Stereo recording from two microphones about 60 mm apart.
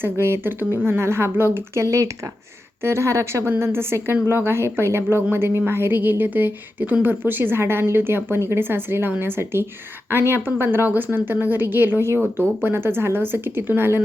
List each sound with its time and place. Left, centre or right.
0.0 s a woman's voice: right
3.6 s a woman's voice: right